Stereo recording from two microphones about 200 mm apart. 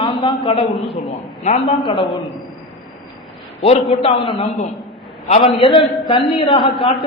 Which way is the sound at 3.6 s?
30° left (ahead or behind).